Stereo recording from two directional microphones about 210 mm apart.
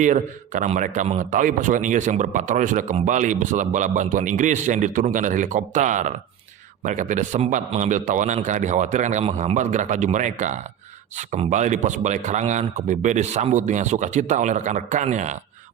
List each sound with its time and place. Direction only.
0.0 s a man's voice: 35° right (ahead or behind)